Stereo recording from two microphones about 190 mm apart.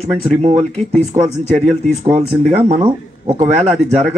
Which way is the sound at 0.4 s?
35° right (ahead or behind).